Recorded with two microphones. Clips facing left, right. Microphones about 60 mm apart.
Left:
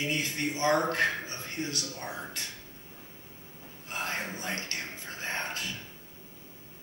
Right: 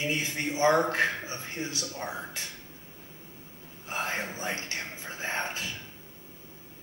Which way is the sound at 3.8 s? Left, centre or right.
Centre.